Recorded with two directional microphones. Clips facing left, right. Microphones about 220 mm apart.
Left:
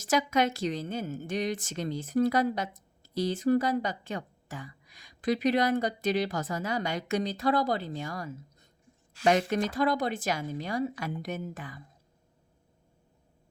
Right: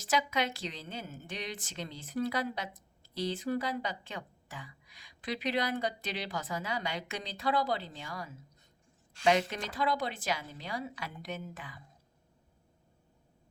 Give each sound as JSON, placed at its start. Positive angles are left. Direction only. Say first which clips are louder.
{"t": 0.0, "sound": "a woman's voice", "louder": "left 6 dB", "side_deg": 45}